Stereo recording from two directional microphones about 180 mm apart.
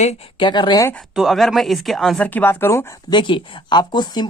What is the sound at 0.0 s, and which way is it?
Speech, 35° left (ahead or behind).